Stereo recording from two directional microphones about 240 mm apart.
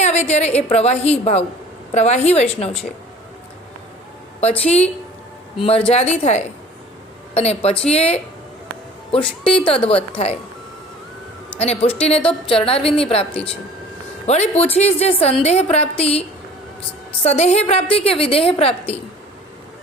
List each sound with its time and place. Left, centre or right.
0.0 s a woman's voice: left
4.4 s a woman's voice: left
11.6 s a woman's voice: left
14.3 s a woman's voice: left
17.2 s a woman's voice: left